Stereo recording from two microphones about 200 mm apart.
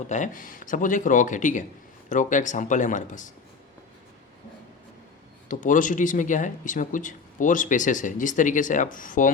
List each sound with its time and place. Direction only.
0.1 s speech: 40° left (ahead or behind)
5.5 s speech: 40° left (ahead or behind)